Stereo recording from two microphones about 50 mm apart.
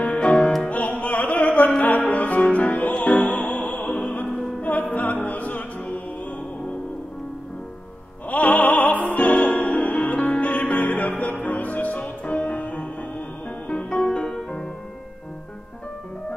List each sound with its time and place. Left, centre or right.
0.0 s music: left
4.0 s music: left
8.3 s music: left; by 14.7 s centre